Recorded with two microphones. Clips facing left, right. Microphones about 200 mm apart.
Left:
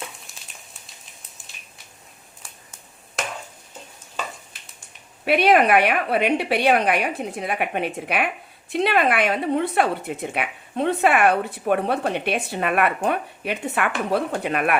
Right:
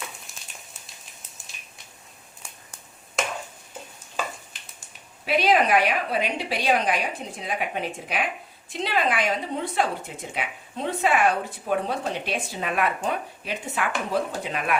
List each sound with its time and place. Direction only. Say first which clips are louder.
0.3 s frying: even; centre (ahead or behind)
5.2 s speech: left 4 dB; 60° left (ahead or behind)